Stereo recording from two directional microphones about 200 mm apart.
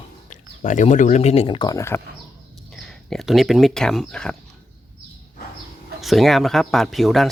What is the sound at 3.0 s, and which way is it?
Speech, centre (ahead or behind).